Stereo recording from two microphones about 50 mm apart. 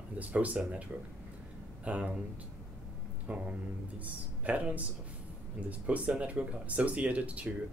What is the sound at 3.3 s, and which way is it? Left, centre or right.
Speech, right.